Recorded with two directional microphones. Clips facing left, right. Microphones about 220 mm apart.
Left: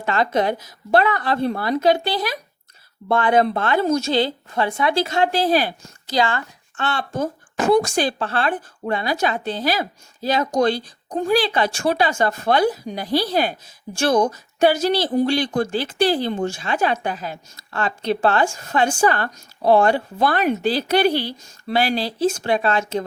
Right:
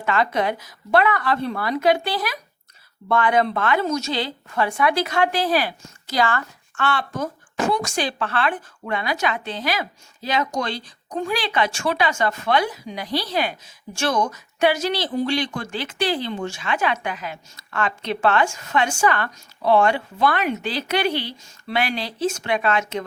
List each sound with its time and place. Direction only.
0.0 s a woman's voice: 35° left (ahead or behind)